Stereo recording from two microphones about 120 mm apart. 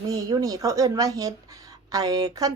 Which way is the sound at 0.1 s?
30° right (ahead or behind).